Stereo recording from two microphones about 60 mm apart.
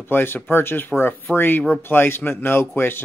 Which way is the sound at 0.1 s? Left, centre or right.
Left.